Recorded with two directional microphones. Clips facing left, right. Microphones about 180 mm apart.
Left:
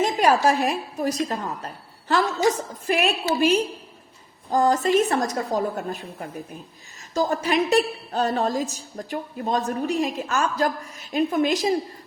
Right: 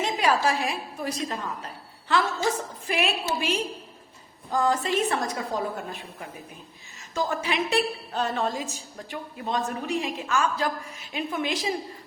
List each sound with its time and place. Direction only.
0.0 s a woman's voice: 45° left (ahead or behind)
4.5 s a woman's voice: 40° left (ahead or behind)
7.1 s a woman's voice: 40° left (ahead or behind)